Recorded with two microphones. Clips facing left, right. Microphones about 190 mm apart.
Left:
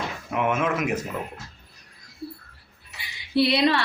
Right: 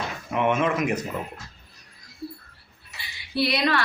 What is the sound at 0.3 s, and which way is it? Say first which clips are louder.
Speech: right 1 dB; 5° left (ahead or behind).